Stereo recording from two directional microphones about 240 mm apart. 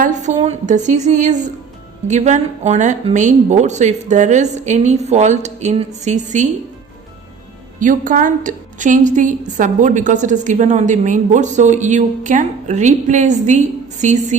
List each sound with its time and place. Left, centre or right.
0.0 s a woman's voice: right
7.8 s a woman's voice: right